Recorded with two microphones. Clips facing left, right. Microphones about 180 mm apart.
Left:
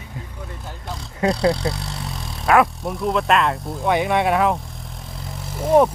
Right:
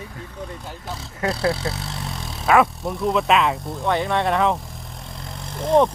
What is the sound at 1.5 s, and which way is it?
Speech, centre (ahead or behind).